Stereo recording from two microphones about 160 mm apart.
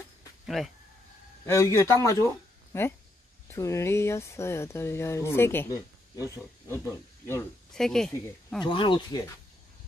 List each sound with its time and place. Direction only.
0.6 s speech: 5° left (ahead or behind)
1.4 s speech: 15° left (ahead or behind)
3.4 s speech: 20° left (ahead or behind)
7.7 s speech: 5° left (ahead or behind)
8.5 s speech: 30° left (ahead or behind)